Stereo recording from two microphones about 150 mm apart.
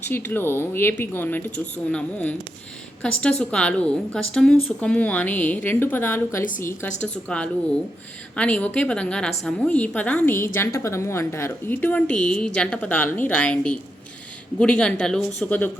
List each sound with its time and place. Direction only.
0.0 s a woman's voice: 15° left (ahead or behind)